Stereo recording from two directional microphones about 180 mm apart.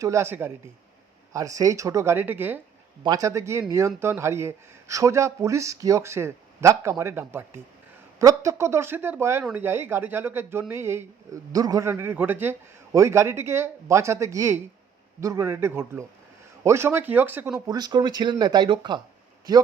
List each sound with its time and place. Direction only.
0.0 s speech: 15° right (ahead or behind)
17.7 s speech: 20° right (ahead or behind)